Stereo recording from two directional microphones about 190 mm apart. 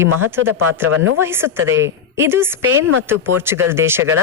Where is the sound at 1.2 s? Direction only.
15° right (ahead or behind).